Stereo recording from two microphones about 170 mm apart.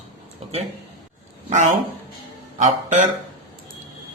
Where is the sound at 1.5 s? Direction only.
45° right (ahead or behind).